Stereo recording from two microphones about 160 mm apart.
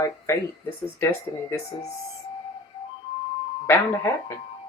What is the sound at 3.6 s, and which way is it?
Speech, 15° left (ahead or behind).